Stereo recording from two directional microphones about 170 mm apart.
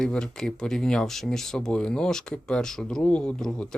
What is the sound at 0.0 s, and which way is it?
Speech, 5° left (ahead or behind).